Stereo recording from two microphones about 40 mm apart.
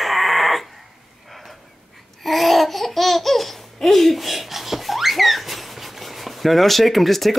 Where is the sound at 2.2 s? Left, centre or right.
Centre.